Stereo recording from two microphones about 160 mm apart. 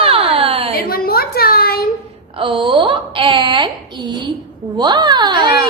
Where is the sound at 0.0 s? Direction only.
35° right (ahead or behind).